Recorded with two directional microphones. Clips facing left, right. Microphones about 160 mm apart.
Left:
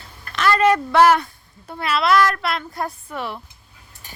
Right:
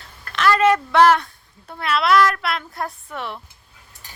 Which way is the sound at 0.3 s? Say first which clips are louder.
Even; centre (ahead or behind).